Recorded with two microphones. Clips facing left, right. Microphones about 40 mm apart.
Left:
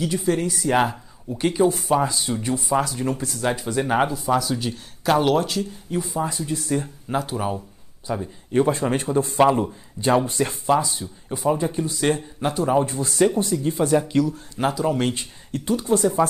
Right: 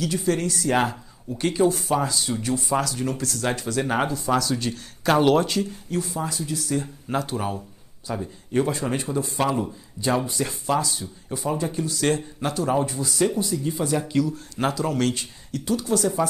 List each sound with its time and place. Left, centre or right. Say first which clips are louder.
0.2 s speech: left 1 dB; centre
2.8 s speech: left 2 dB; left; by 5.7 s centre
5.9 s speech: left 2 dB; centre
7.1 s speech: left 2 dB; centre
8.6 s speech: left 4 dB; left
9.5 s speech: left 5 dB; left
10.7 s speech: left 3 dB; left
11.2 s speech: left 6 dB; centre
11.6 s speech: left 2 dB; left
14.7 s speech: left 2 dB; centre